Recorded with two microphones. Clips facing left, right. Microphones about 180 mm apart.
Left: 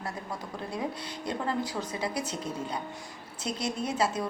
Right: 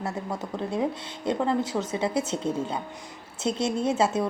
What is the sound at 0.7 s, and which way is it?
A woman's voice, 25° right (ahead or behind).